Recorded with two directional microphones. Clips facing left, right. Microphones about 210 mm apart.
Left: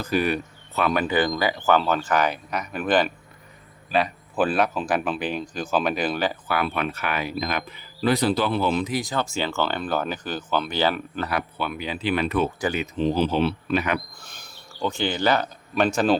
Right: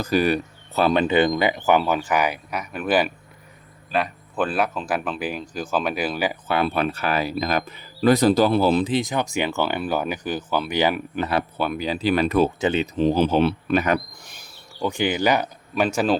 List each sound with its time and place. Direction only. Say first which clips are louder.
0.0 s speech: right 3 dB; 35° right (ahead or behind)
0.8 s speech: right 4 dB; 25° right (ahead or behind); by 6.3 s 10° right (ahead or behind)
6.5 s speech: right 3 dB; 30° right (ahead or behind)
9.0 s speech: right 3 dB; 15° right (ahead or behind)
11.5 s speech: right 5 dB; 40° right (ahead or behind)
12.5 s speech: right 4 dB; 25° right (ahead or behind)
13.0 s speech: right 3 dB; 50° right (ahead or behind)
14.2 s a sound: even; 15° right (ahead or behind)
15.7 s speech: even; 5° right (ahead or behind)